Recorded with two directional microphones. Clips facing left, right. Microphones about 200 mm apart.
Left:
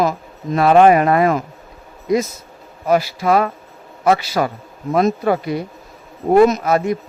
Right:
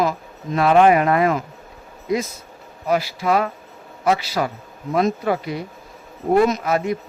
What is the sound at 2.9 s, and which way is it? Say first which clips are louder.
A man's voice: left 4 dB; 45° left (ahead or behind).